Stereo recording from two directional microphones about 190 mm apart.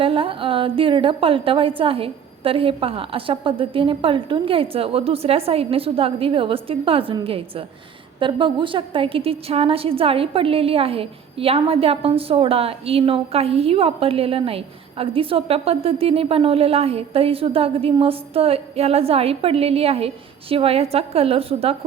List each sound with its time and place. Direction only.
0.0 s a woman's voice: 30° right (ahead or behind)